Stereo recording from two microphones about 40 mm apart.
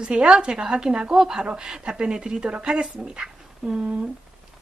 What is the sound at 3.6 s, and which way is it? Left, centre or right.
Speech, centre.